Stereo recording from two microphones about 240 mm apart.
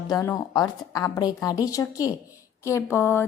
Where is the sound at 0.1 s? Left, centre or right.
Centre.